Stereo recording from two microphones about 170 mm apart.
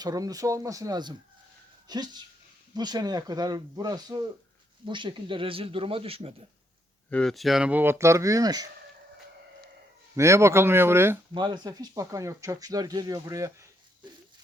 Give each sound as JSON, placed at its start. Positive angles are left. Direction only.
{"t": 0.0, "sound": "speech", "side_deg": -20}
{"t": 7.1, "sound": "speech", "side_deg": 5}
{"t": 10.2, "sound": "speech", "side_deg": -15}
{"t": 11.3, "sound": "speech", "side_deg": -25}